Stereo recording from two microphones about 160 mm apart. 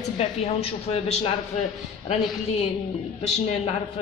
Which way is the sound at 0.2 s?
40° left (ahead or behind).